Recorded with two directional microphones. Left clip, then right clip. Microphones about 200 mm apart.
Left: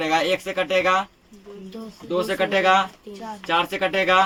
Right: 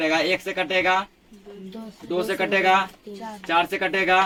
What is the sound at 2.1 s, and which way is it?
Speech, 25° left (ahead or behind).